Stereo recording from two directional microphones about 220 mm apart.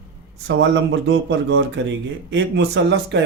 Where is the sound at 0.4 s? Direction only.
55° right (ahead or behind).